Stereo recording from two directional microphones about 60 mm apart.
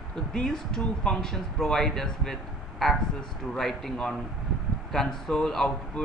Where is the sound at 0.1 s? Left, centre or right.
Centre.